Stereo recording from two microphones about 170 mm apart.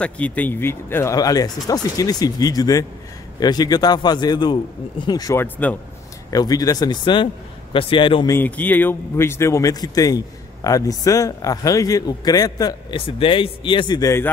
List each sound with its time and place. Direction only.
0.0 s a man's voice: 10° left (ahead or behind)
6.3 s a man's voice: 20° left (ahead or behind)
8.4 s a man's voice: 10° left (ahead or behind)